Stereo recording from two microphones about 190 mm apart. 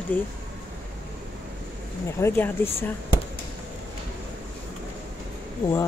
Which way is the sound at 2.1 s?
10° left (ahead or behind).